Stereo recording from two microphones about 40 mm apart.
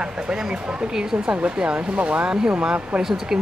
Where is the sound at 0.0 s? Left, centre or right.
Right.